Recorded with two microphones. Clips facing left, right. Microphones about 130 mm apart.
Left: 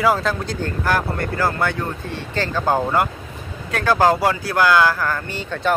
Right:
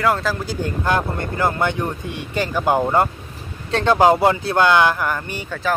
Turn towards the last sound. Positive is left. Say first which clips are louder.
# even
turn(degrees=-15)  # may be behind; listen again after turning